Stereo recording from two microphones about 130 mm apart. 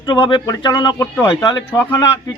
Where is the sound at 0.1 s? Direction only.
35° left (ahead or behind).